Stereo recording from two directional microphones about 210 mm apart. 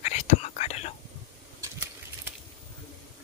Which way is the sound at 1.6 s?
10° right (ahead or behind).